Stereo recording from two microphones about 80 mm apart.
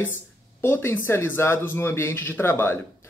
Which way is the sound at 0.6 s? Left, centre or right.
Left.